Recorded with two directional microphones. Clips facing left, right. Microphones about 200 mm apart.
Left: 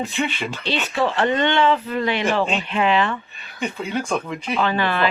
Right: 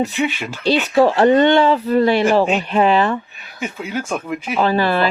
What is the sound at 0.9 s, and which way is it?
Speech, 40° right (ahead or behind).